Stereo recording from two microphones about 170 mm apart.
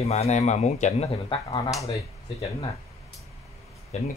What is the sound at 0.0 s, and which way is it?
A man's voice, 40° left (ahead or behind).